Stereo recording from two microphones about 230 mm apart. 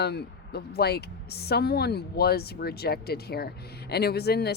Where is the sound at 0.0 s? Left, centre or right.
Left.